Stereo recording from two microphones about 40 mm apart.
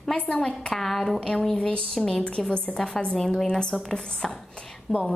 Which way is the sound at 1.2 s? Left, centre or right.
Centre.